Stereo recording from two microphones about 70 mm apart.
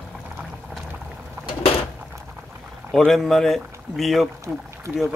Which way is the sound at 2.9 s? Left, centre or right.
Centre.